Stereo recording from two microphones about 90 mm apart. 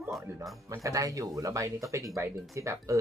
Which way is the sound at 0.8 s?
40° right (ahead or behind).